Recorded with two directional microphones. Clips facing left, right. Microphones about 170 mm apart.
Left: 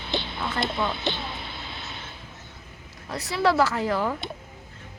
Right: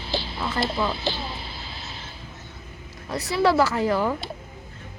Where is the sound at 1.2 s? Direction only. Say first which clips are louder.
Right 1 dB; 30° right (ahead or behind).